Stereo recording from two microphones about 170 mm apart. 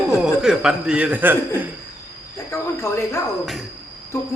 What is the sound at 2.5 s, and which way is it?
Speech, 15° left (ahead or behind).